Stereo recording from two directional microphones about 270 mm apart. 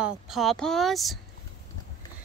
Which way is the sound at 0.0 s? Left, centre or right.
Centre.